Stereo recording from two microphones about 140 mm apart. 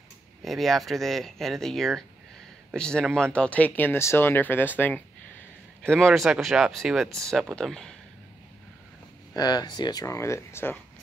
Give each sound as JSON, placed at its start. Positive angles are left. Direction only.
{"t": 0.4, "sound": "speech", "side_deg": 0}
{"t": 9.3, "sound": "speech", "side_deg": 30}